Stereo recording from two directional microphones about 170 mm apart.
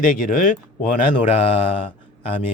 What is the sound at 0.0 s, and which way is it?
Speech, 50° left (ahead or behind).